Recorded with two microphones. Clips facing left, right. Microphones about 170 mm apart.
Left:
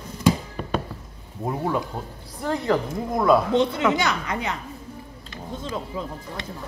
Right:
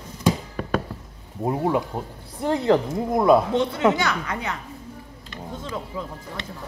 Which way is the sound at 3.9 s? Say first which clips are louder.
Left 1 dB; 20° left (ahead or behind).